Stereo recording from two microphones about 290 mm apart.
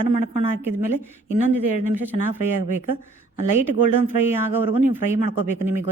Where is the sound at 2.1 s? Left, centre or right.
Right.